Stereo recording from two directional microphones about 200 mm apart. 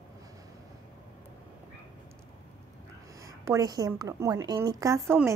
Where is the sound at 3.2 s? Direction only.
15° right (ahead or behind).